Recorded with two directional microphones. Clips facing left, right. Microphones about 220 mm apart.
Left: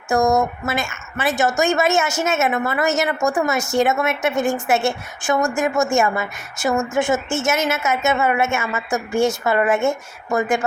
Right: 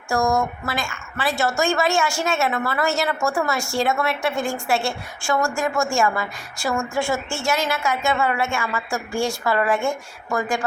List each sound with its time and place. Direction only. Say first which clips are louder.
0.1 s a woman's voice: left 4 dB; 20° left (ahead or behind)